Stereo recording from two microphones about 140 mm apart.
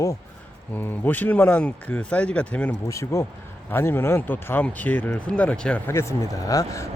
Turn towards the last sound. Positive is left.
turn(degrees=25)  # may be behind; listen again after turning